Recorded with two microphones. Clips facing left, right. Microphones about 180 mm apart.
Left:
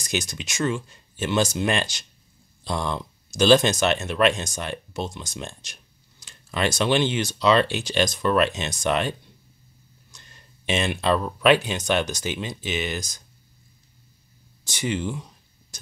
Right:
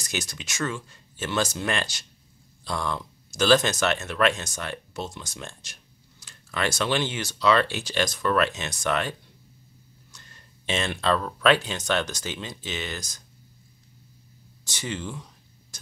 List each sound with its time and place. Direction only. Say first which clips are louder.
0.1 s speech: left 5 dB; 15° left (ahead or behind)
10.1 s speech: left 2 dB; 15° left (ahead or behind)
14.7 s speech: left 6 dB; 15° left (ahead or behind)